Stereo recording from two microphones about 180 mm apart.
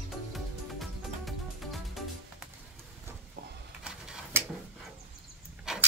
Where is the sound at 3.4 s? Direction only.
55° right (ahead or behind).